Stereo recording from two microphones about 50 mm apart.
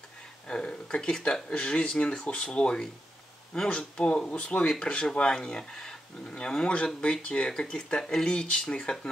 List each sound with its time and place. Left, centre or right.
0.5 s speech: centre